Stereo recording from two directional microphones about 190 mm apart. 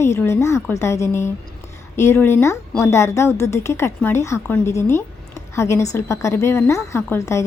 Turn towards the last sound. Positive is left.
turn(degrees=15)  # may be behind; listen again after turning